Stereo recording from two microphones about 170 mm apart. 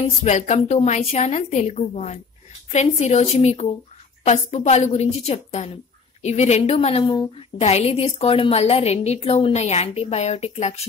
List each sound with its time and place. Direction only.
0.2 s a woman's voice: 45° left (ahead or behind)
7.1 s a woman's voice: 25° left (ahead or behind)
7.5 s a woman's voice: 40° left (ahead or behind)